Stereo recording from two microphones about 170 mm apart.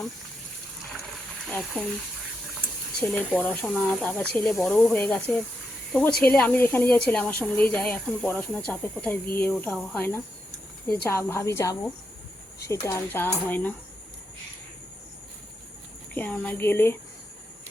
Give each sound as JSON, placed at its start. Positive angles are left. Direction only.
{"t": 1.5, "sound": "speech", "side_deg": 10}
{"t": 3.0, "sound": "speech", "side_deg": 5}
{"t": 16.1, "sound": "speech", "side_deg": 10}